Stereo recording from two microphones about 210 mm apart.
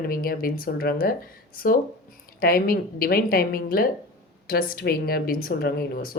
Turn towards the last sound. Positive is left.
turn(degrees=45)  # may be behind; listen again after turning